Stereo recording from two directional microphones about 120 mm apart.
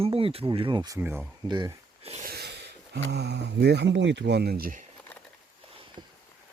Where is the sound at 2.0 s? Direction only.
60° right (ahead or behind).